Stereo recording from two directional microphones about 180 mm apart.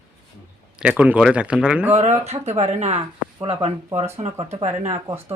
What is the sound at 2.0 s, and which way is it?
Speech, 35° right (ahead or behind).